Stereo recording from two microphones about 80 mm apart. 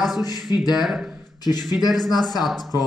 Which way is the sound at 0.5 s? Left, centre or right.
Left.